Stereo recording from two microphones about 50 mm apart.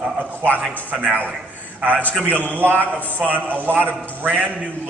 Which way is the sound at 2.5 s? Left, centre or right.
Right.